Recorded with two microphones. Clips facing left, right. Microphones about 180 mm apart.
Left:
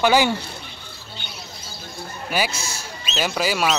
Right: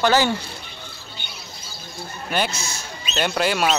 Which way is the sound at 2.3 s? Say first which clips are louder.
Even; 5° left (ahead or behind).